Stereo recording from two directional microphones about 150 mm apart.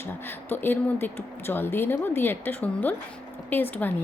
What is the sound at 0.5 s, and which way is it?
A woman's voice, 15° left (ahead or behind).